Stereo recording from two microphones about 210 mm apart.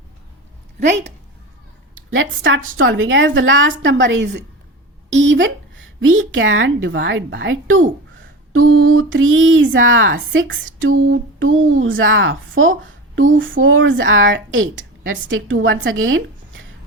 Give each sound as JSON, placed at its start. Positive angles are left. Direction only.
{"t": 2.1, "sound": "a woman's voice", "side_deg": -65}
{"t": 6.0, "sound": "a woman's voice", "side_deg": -70}